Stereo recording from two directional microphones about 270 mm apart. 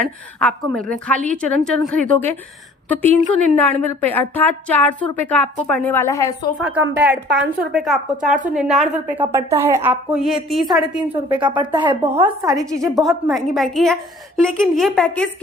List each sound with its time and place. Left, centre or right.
0.3 s a woman's voice: centre
6.6 s a woman's voice: centre
11.3 s a woman's voice: centre
12.9 s a woman's voice: centre